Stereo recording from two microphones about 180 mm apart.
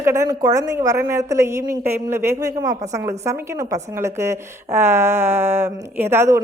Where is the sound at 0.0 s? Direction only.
15° right (ahead or behind).